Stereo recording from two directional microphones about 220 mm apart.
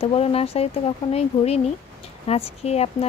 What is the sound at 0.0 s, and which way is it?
Speech, 25° left (ahead or behind).